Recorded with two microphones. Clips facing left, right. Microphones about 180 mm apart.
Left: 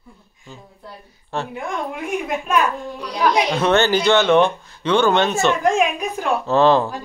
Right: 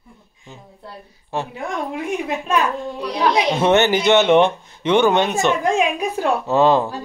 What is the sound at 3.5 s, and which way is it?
Speech, 20° right (ahead or behind).